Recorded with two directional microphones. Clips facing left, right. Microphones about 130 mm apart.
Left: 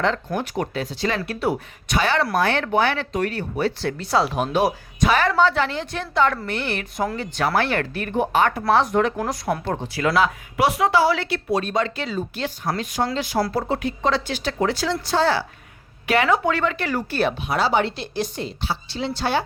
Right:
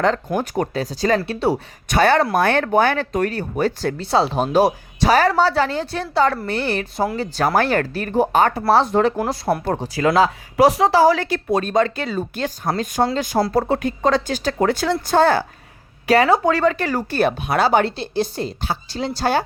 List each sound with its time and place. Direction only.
0.3 s a woman's voice: 40° right (ahead or behind)
1.2 s speech: 30° right (ahead or behind)
1.9 s speech: 50° right (ahead or behind)
4.0 s a woman's voice: 25° right (ahead or behind); by 15.4 s 50° right (ahead or behind)
16.0 s a woman's voice: 35° right (ahead or behind)
17.9 s a woman's voice: 30° right (ahead or behind)